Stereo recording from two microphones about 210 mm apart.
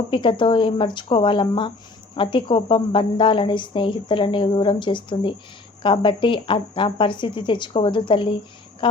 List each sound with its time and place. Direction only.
0.1 s speech: 25° left (ahead or behind)
8.8 s insect: 25° left (ahead or behind)